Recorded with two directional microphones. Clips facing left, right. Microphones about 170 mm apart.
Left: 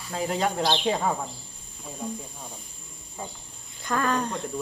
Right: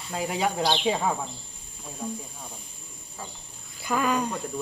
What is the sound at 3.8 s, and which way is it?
Speech, 10° right (ahead or behind).